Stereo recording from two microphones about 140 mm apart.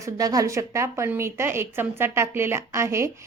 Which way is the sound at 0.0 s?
25° right (ahead or behind).